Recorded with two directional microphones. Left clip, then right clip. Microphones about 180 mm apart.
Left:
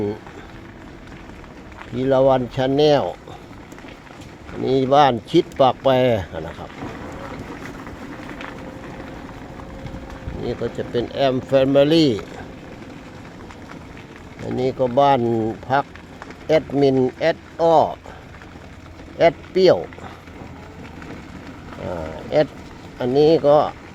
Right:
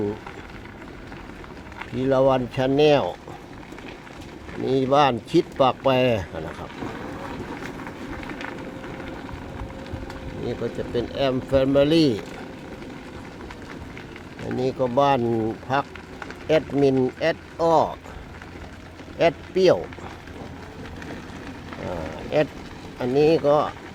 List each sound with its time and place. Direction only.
2.0 s speech: 30° left (ahead or behind)
4.6 s speech: 25° left (ahead or behind)
10.4 s speech: 25° left (ahead or behind)
14.5 s speech: 25° left (ahead or behind)
19.2 s speech: 25° left (ahead or behind)
21.8 s run: 25° left (ahead or behind)
23.0 s speech: 25° left (ahead or behind)